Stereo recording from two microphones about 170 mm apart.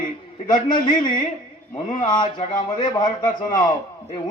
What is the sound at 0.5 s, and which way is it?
A man's voice, 50° left (ahead or behind).